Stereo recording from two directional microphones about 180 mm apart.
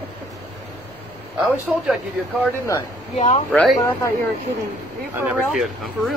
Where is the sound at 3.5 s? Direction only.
5° left (ahead or behind).